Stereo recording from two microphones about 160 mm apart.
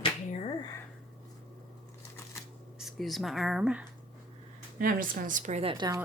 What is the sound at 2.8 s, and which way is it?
Speech, centre (ahead or behind).